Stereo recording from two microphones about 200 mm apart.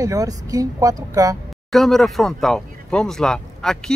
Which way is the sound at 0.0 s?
15° right (ahead or behind).